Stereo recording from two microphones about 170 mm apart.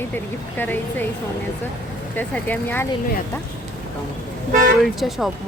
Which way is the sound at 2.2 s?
10° left (ahead or behind).